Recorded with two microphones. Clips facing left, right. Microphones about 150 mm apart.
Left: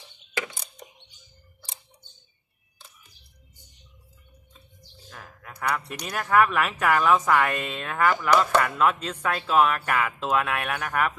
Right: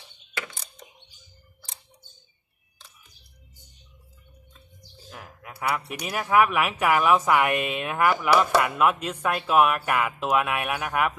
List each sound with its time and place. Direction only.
0.4 s music: 15° left (ahead or behind)
5.1 s speech: 10° right (ahead or behind)